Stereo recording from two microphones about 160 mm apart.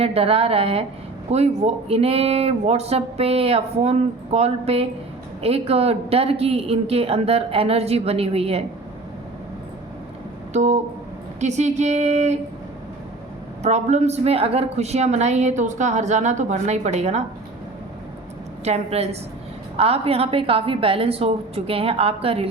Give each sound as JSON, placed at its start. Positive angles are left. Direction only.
{"t": 0.0, "sound": "speech", "side_deg": -40}
{"t": 10.5, "sound": "a woman's voice", "side_deg": -45}
{"t": 13.6, "sound": "a woman's voice", "side_deg": -45}
{"t": 18.6, "sound": "speech", "side_deg": -40}